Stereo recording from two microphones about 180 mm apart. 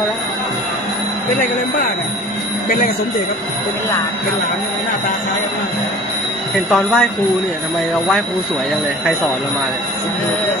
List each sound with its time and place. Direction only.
1.3 s speech: 40° left (ahead or behind)
6.5 s speech: 5° left (ahead or behind)